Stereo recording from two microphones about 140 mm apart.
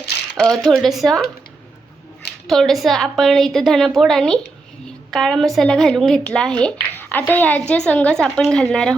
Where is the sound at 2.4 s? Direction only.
Centre (ahead or behind).